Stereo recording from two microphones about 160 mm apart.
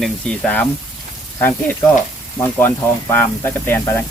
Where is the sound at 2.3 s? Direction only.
15° left (ahead or behind).